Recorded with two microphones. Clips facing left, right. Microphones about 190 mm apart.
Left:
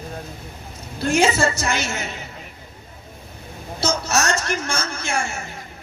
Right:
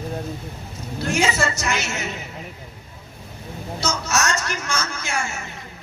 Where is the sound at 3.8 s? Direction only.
30° left (ahead or behind).